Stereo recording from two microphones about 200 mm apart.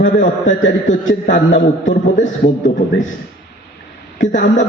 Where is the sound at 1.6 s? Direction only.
35° left (ahead or behind).